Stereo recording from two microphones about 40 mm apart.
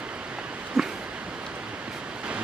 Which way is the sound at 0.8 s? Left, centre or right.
Centre.